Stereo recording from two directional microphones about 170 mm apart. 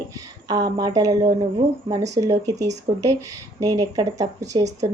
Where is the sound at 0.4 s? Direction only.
25° right (ahead or behind).